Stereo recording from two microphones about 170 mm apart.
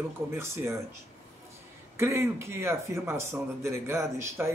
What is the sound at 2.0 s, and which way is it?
Speech, 15° right (ahead or behind).